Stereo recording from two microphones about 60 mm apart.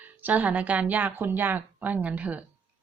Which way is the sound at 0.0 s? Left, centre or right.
Right.